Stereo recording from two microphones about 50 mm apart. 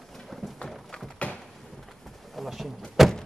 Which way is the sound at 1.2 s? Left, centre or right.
Left.